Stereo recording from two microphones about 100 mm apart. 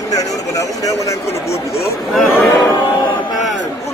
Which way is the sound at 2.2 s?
25° left (ahead or behind).